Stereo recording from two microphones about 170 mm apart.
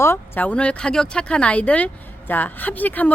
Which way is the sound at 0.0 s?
10° left (ahead or behind).